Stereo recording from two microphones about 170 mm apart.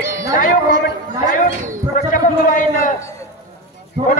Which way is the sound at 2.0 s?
55° left (ahead or behind).